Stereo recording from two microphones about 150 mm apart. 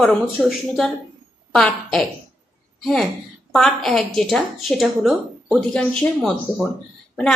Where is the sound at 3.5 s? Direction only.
5° left (ahead or behind).